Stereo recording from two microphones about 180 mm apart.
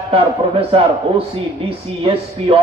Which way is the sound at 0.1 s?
30° right (ahead or behind).